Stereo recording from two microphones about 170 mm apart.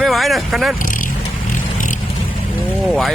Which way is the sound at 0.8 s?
50° left (ahead or behind).